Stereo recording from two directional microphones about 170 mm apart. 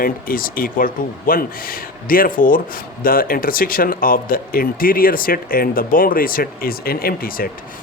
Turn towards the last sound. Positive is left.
turn(degrees=60)  # may be behind; listen again after turning